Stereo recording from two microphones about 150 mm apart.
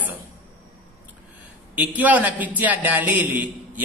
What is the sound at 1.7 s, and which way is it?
A man's voice, 10° right (ahead or behind).